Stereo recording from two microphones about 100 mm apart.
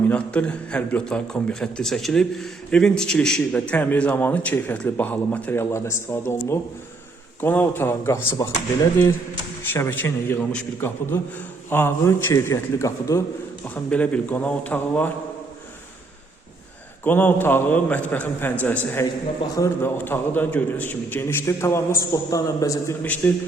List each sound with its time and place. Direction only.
0.1 s a man's voice: 10° left (ahead or behind)
9.7 s a man's voice: 25° left (ahead or behind)
13.9 s a man's voice: 15° left (ahead or behind)
17.0 s a man's voice: 20° left (ahead or behind)
23.0 s a man's voice: 15° left (ahead or behind)